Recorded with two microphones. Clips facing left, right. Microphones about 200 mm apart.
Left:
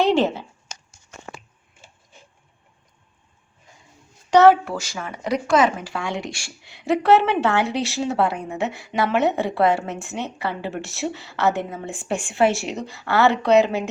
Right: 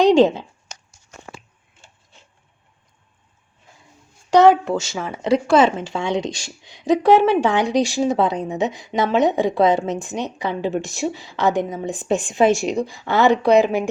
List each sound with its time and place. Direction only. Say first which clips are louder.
0.0 s speech: right 5 dB; 15° right (ahead or behind)
4.3 s a woman's voice: right 1 dB; 15° right (ahead or behind)